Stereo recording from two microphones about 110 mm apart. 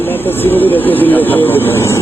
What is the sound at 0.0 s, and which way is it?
A man's voice, 20° left (ahead or behind).